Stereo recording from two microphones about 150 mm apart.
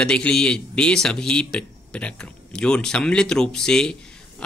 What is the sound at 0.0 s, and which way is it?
Speech, 5° left (ahead or behind).